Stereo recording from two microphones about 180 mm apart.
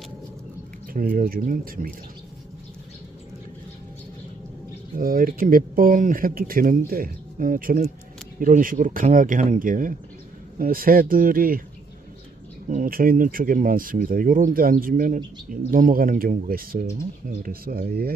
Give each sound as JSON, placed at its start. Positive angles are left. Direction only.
{"t": 0.9, "sound": "speech", "side_deg": -50}
{"t": 4.9, "sound": "speech", "side_deg": -50}
{"t": 12.6, "sound": "speech", "side_deg": -45}